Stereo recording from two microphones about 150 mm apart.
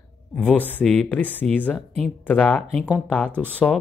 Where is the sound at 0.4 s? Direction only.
10° left (ahead or behind).